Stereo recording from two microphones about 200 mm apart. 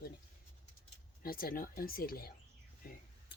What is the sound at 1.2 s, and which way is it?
Speech, 45° left (ahead or behind).